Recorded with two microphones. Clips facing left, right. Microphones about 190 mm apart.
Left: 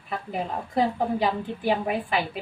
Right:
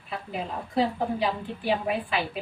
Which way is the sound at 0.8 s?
50° left (ahead or behind).